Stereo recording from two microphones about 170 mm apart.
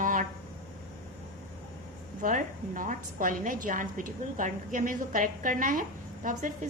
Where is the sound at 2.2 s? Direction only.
50° right (ahead or behind).